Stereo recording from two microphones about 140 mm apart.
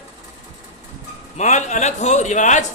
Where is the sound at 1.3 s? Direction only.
60° left (ahead or behind).